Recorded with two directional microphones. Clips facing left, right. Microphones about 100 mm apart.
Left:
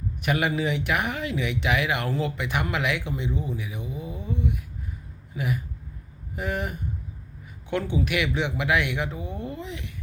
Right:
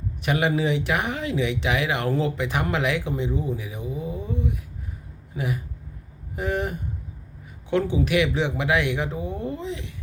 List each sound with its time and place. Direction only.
0.2 s speech: 30° right (ahead or behind)